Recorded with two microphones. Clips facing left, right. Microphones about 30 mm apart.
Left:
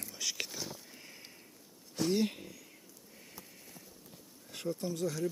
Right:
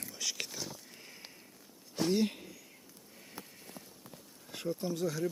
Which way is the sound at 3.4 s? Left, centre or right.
Right.